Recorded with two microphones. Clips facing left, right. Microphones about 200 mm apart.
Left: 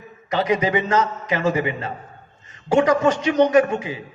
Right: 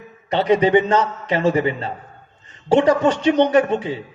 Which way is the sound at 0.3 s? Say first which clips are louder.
Right 5 dB; 30° right (ahead or behind).